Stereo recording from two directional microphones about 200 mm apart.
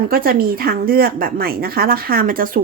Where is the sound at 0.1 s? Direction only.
45° right (ahead or behind).